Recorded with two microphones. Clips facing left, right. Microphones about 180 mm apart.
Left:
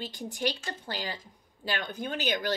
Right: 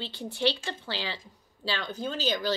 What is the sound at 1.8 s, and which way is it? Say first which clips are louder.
Speech: right 4 dB; 15° left (ahead or behind).